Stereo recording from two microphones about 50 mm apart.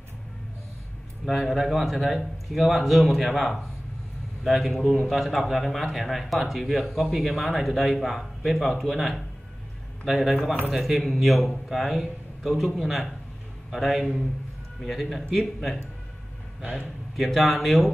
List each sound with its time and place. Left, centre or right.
1.2 s a man's voice: centre
17.2 s a man's voice: centre